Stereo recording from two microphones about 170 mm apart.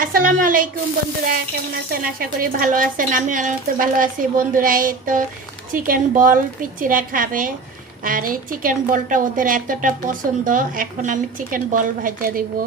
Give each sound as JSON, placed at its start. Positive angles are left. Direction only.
{"t": 0.0, "sound": "a woman's voice", "side_deg": -55}